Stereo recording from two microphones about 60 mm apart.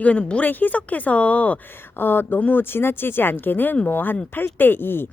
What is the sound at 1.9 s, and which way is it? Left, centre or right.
Speech, left.